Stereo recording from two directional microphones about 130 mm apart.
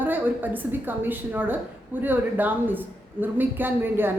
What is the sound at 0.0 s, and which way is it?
Speech, 15° right (ahead or behind).